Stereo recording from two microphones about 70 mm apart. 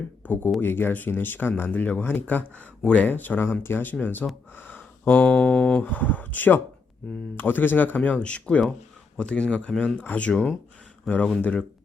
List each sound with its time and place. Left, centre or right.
0.2 s speech: left
4.5 s a sound: left
5.3 s speech: centre
5.8 s speech: left
11.1 s speech: centre